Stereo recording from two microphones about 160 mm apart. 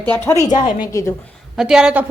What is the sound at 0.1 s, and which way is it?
Speech, 20° left (ahead or behind).